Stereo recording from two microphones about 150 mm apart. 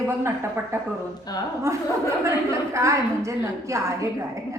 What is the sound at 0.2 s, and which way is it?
A woman's voice, 15° right (ahead or behind).